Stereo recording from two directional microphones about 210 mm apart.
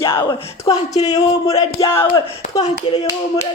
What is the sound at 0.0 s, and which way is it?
Speech, 25° left (ahead or behind).